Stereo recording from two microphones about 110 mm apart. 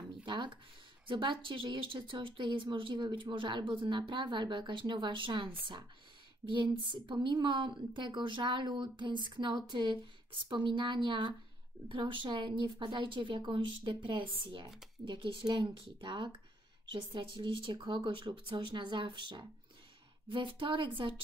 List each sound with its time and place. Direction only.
0.2 s a woman's voice: 45° right (ahead or behind)